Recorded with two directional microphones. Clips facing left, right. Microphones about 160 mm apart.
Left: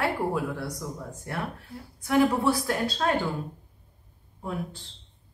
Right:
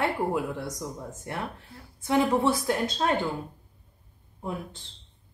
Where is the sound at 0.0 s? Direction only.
20° right (ahead or behind).